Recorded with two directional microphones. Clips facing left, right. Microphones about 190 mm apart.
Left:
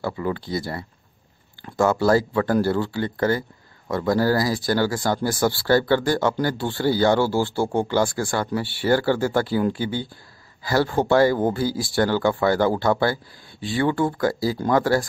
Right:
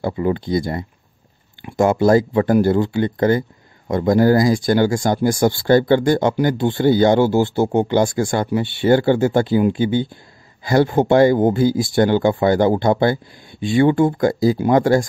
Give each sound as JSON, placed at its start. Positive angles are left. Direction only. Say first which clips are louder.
{"t": 0.0, "sound": "speech", "louder": "right 6 dB", "side_deg": -20}